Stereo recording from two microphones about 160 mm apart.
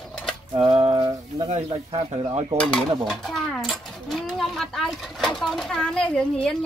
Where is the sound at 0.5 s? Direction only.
35° right (ahead or behind).